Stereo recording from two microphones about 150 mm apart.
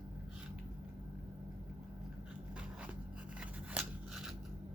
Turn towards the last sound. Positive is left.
turn(degrees=-5)  # may be behind; listen again after turning